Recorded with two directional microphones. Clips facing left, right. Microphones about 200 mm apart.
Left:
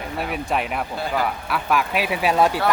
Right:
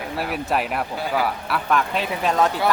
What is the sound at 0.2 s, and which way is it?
Speech, centre (ahead or behind).